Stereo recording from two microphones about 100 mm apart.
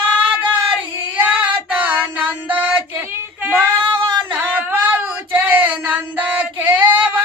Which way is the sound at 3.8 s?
50° right (ahead or behind).